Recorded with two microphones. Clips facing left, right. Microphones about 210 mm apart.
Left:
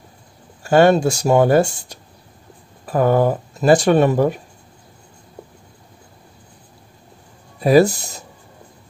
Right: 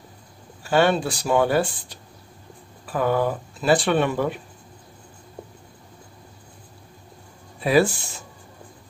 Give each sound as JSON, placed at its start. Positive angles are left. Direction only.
{"t": 0.7, "sound": "speech", "side_deg": 45}
{"t": 7.6, "sound": "speech", "side_deg": 40}